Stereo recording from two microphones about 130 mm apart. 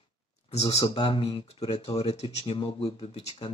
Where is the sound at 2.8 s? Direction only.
50° left (ahead or behind).